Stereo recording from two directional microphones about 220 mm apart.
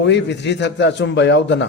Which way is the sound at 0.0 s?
50° left (ahead or behind).